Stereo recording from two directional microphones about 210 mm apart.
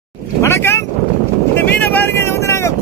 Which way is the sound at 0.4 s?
10° left (ahead or behind).